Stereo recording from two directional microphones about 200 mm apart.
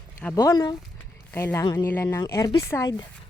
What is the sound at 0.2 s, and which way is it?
Speech, 15° left (ahead or behind).